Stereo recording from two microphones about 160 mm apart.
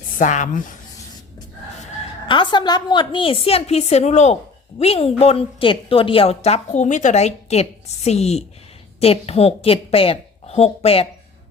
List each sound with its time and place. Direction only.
0.2 s speech: 50° left (ahead or behind)
2.2 s a woman's voice: 30° left (ahead or behind)